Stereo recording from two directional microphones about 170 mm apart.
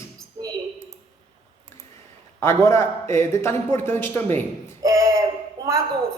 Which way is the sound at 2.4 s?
15° left (ahead or behind).